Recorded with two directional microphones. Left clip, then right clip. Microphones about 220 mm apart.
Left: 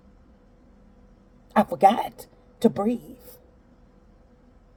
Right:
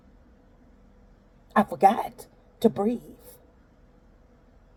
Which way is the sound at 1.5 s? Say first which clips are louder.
Left 2 dB; 15° right (ahead or behind).